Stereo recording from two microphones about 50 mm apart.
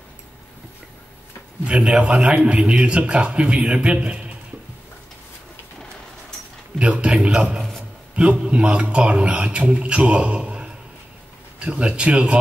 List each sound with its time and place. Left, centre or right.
1.7 s a man's voice: right
6.8 s a man's voice: right